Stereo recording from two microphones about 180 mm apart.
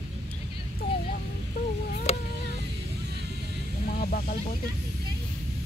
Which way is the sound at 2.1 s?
35° left (ahead or behind).